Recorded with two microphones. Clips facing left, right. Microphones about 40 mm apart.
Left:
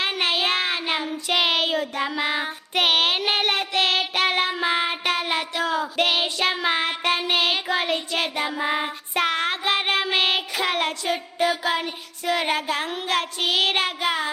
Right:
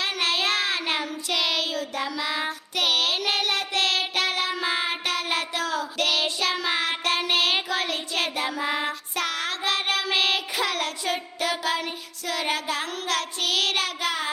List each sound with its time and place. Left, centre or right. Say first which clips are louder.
0.0 s child singing: left 2 dB; left
7.9 s child singing: left 2 dB; centre; by 14.2 s left